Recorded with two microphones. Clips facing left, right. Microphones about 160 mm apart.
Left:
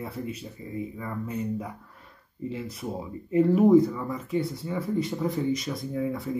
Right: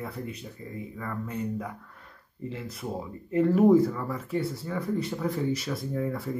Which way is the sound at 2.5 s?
25° left (ahead or behind).